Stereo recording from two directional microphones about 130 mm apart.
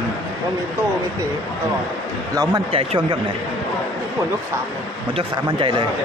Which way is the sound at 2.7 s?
45° right (ahead or behind).